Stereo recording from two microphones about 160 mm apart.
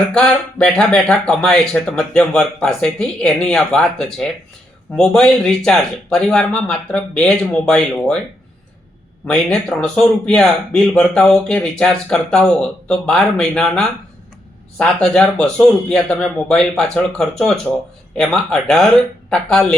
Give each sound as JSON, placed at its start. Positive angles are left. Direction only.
{"t": 0.1, "sound": "a man's voice", "side_deg": 5}
{"t": 9.2, "sound": "a man's voice", "side_deg": 5}